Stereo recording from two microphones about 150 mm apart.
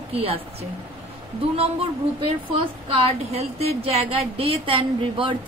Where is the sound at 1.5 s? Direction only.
40° right (ahead or behind).